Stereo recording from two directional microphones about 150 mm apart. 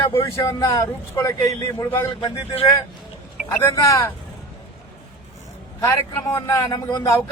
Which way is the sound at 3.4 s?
15° left (ahead or behind).